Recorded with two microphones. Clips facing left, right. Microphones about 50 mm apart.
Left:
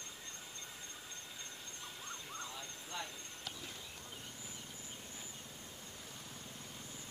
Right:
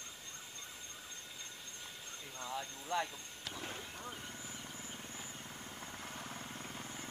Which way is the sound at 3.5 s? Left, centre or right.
Right.